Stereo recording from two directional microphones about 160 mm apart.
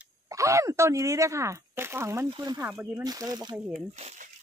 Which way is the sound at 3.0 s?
25° right (ahead or behind).